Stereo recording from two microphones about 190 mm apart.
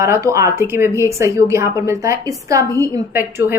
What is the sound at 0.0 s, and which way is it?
A woman's voice, 15° right (ahead or behind).